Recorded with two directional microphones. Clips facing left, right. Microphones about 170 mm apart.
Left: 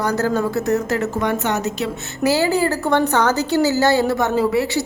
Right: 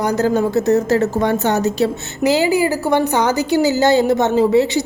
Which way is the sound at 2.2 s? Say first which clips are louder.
Right 2 dB; 15° right (ahead or behind).